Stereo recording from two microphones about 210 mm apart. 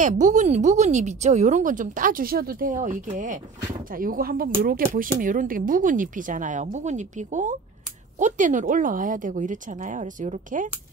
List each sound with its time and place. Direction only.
0.0 s speech: 35° right (ahead or behind)